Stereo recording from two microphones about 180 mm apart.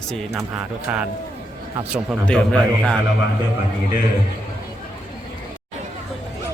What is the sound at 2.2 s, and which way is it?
Speech, 5° left (ahead or behind).